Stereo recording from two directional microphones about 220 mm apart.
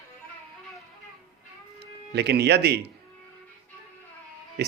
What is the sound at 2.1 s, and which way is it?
Speech, 50° right (ahead or behind).